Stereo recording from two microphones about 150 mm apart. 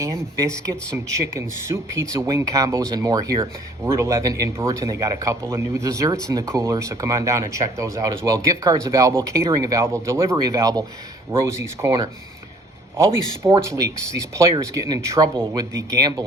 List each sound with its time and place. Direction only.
0.0 s a man's voice: 20° right (ahead or behind)
13.4 s speech: 10° right (ahead or behind)
14.2 s a man's voice: 20° right (ahead or behind)